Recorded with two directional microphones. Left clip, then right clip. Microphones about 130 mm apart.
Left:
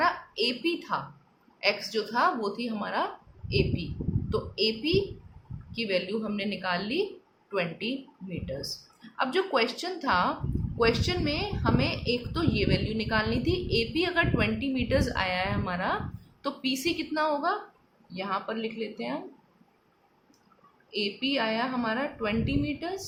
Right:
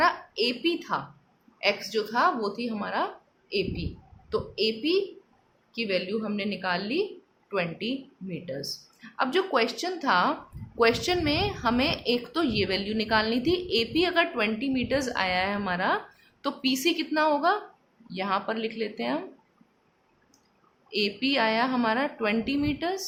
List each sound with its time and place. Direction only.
0.0 s a woman's voice: 30° right (ahead or behind)
10.8 s a woman's voice: 35° right (ahead or behind)
20.9 s a woman's voice: 35° right (ahead or behind)